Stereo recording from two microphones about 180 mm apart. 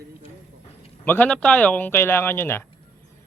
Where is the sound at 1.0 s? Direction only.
10° left (ahead or behind).